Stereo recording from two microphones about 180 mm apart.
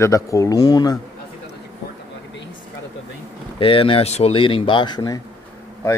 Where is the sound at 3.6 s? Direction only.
30° left (ahead or behind).